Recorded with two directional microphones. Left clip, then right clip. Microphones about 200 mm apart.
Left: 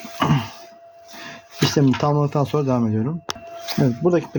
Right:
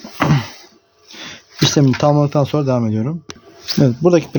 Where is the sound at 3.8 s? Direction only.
45° right (ahead or behind).